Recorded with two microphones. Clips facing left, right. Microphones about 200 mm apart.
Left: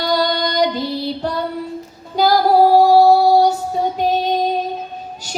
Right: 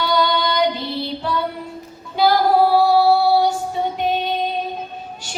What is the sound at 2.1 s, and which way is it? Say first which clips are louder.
Female singing: left 2 dB; 40° left (ahead or behind).